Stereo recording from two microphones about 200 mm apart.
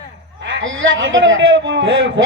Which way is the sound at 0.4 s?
70° right (ahead or behind).